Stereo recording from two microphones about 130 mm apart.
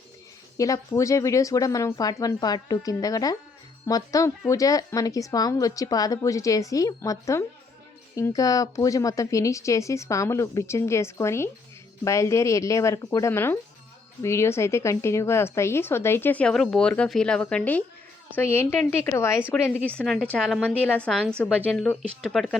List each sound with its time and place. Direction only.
0.5 s a woman's voice: 25° left (ahead or behind)
20.3 s speech: centre (ahead or behind)